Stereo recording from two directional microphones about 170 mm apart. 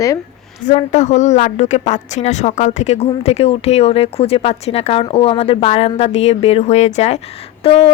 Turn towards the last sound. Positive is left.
turn(degrees=35)  # may be behind; listen again after turning